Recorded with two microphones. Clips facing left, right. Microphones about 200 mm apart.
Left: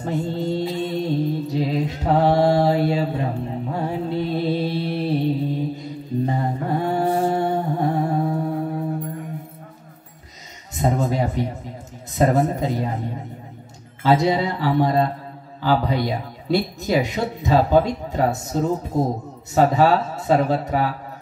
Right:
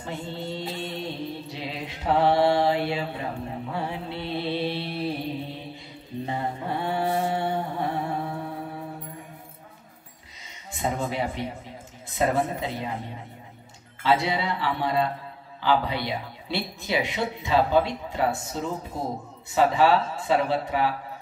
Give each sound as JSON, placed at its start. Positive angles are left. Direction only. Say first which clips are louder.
{"t": 0.0, "sound": "mantra", "louder": "left 9 dB", "side_deg": 40}
{"t": 3.6, "sound": "music", "louder": "left 7 dB", "side_deg": 45}
{"t": 5.5, "sound": "mantra", "louder": "left 12 dB", "side_deg": 45}
{"t": 10.7, "sound": "a sound", "louder": "left 7 dB", "side_deg": 40}
{"t": 12.1, "sound": "speech", "louder": "left 6 dB", "side_deg": 40}